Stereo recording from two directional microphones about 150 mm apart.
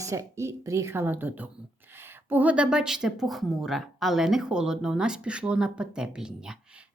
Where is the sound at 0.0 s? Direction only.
20° right (ahead or behind).